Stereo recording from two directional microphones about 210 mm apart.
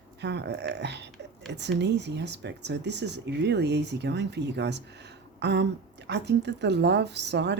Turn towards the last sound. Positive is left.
turn(degrees=-55)  # may be behind; listen again after turning